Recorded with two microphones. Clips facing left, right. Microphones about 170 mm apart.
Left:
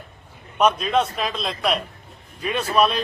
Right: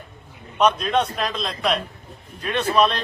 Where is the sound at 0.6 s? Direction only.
5° left (ahead or behind).